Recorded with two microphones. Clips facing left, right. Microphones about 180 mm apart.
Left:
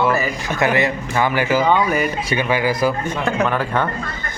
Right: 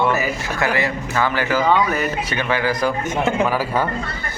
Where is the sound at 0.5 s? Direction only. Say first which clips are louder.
Left 4 dB; 20° left (ahead or behind).